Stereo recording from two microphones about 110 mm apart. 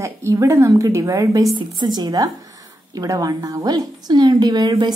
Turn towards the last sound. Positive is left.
turn(degrees=-35)  # may be behind; listen again after turning